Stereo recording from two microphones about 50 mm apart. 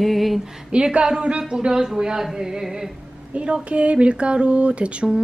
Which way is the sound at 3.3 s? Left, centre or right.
Right.